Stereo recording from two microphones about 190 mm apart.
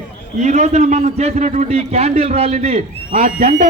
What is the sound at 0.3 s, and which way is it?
A man's voice, 40° right (ahead or behind).